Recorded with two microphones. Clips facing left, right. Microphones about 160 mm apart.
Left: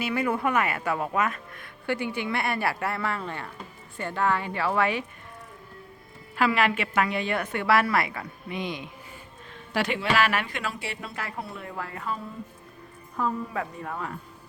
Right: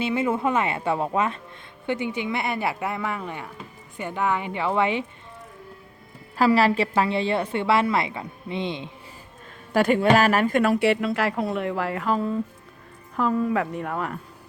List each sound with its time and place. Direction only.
0.0 s a woman's voice: 25° right (ahead or behind)
6.3 s a woman's voice: 35° right (ahead or behind)
9.7 s a woman's voice: 45° right (ahead or behind); by 14.2 s 65° right (ahead or behind)